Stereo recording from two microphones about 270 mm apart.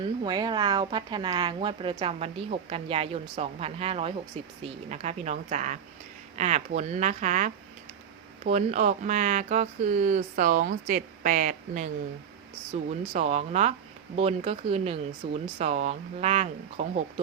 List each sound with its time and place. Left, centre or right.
0.0 s speech: centre